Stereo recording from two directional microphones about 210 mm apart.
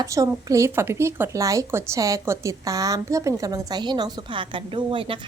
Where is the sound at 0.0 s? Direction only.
15° right (ahead or behind).